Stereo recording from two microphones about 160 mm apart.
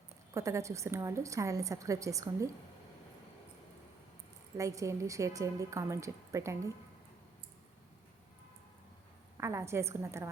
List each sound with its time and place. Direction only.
0.3 s a woman's voice: 20° right (ahead or behind)
4.5 s a woman's voice: 20° right (ahead or behind)
9.4 s a woman's voice: 15° right (ahead or behind)